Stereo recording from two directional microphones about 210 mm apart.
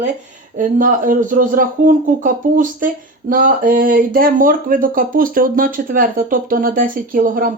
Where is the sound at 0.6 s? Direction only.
40° right (ahead or behind).